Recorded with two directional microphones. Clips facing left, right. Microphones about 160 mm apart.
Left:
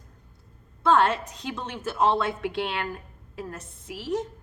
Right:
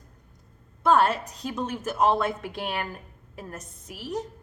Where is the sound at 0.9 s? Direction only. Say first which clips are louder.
Even; 35° right (ahead or behind).